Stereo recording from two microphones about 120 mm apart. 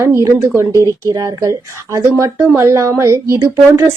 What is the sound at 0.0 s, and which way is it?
A woman's voice, 25° right (ahead or behind).